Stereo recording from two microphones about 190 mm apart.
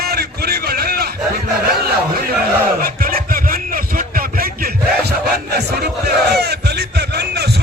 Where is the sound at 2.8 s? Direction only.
50° right (ahead or behind).